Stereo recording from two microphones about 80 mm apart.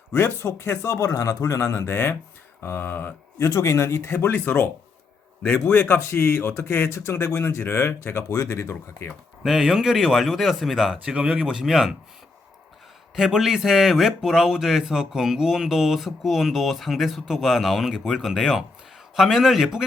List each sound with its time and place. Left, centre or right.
0.1 s speech: left
3.4 s a man's voice: left
8.4 s speech: left
9.4 s speech: centre
13.1 s speech: centre